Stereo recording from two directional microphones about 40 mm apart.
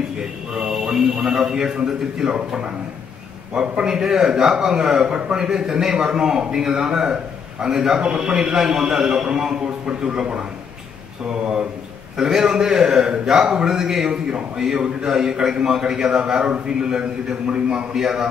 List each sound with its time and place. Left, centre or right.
0.2 s a man's voice: right
3.5 s a man's voice: centre
12.2 s a man's voice: centre